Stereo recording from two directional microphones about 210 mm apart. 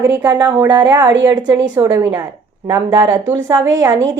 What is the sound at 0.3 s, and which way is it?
A woman's voice, 20° right (ahead or behind).